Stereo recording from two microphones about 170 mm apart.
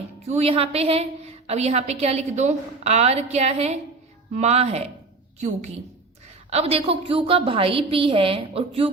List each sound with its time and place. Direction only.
0.3 s a woman's voice: 40° right (ahead or behind)